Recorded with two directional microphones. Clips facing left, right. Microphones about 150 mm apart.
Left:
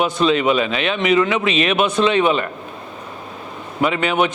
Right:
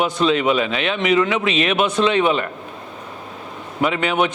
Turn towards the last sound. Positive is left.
turn(degrees=10)  # may be behind; listen again after turning